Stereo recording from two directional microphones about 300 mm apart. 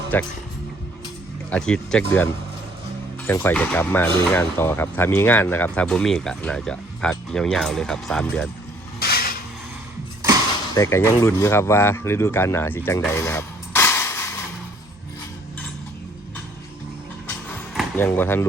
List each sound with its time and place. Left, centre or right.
0.1 s speech: centre
1.5 s speech: centre
9.0 s a sound: left
10.8 s speech: centre
17.7 s speech: centre